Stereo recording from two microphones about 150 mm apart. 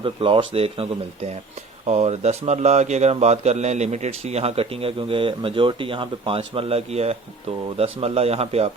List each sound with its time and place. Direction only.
0.0 s speech: 35° right (ahead or behind)